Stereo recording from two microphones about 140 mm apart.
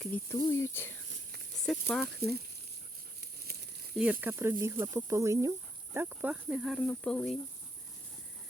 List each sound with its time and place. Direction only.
0.0 s speech: 15° left (ahead or behind)
1.6 s speech: centre (ahead or behind)
3.2 s a sound: 90° right
3.9 s cricket: 10° right (ahead or behind)